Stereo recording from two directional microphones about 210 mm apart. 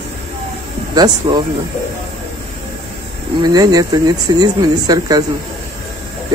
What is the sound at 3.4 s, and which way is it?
Speech, 15° right (ahead or behind).